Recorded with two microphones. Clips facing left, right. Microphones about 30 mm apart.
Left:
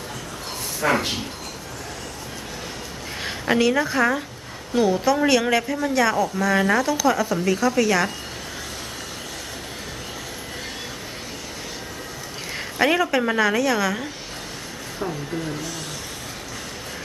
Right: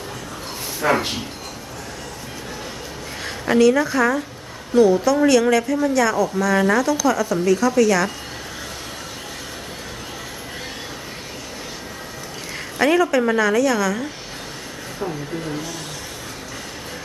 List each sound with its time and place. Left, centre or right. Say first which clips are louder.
0.8 s speech: right 2 dB; centre
3.2 s a woman's voice: right 4 dB; centre
12.5 s a woman's voice: right 3 dB; centre